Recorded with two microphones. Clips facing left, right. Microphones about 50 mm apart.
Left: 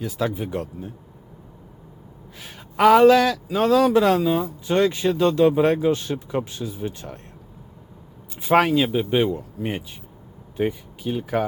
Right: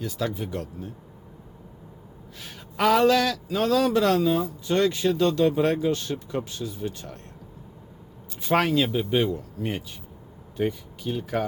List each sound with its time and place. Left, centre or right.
0.0 s a man's voice: centre
2.4 s a man's voice: centre
8.4 s a man's voice: centre